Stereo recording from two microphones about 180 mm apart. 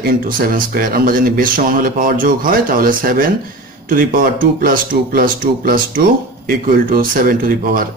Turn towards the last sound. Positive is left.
turn(degrees=-50)  # may be behind; listen again after turning